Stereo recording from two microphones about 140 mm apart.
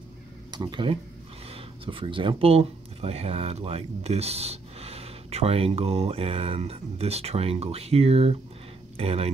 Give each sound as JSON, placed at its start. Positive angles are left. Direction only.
{"t": 0.5, "sound": "speech", "side_deg": -30}